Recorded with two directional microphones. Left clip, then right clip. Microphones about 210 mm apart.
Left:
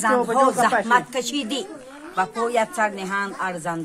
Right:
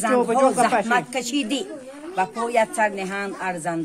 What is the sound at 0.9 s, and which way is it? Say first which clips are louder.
Speech: left 2 dB; 10° left (ahead or behind).